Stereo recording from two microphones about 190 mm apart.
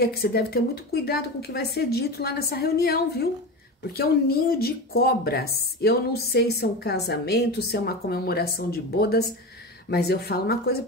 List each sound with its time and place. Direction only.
0.0 s speech: 55° left (ahead or behind)